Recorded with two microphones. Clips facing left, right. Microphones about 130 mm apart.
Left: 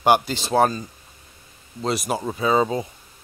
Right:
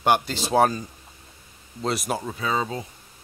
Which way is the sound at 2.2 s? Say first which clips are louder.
Left 10 dB; 25° left (ahead or behind).